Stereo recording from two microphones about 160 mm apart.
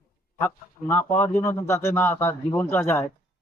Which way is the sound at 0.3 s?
15° left (ahead or behind).